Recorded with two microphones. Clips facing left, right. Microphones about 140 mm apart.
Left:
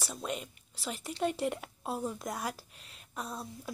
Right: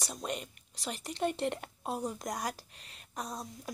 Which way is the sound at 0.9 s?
5° left (ahead or behind).